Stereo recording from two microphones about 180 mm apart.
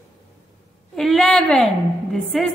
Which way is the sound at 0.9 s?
Centre (ahead or behind).